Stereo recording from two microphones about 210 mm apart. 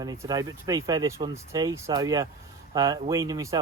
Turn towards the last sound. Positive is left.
turn(degrees=-15)  # may be behind; listen again after turning